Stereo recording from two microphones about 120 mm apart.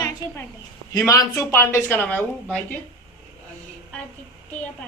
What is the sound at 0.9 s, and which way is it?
Speech, 25° left (ahead or behind).